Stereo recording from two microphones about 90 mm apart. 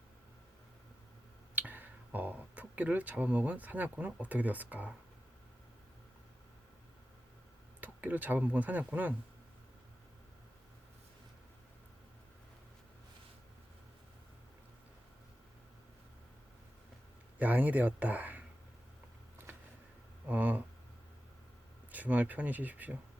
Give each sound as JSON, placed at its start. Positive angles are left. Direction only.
{"t": 1.5, "sound": "speech", "side_deg": -20}
{"t": 7.8, "sound": "speech", "side_deg": -20}
{"t": 17.3, "sound": "speech", "side_deg": -20}
{"t": 20.2, "sound": "speech", "side_deg": -15}
{"t": 21.9, "sound": "speech", "side_deg": -15}